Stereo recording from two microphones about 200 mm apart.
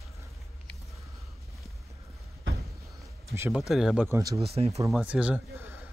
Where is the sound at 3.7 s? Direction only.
Centre (ahead or behind).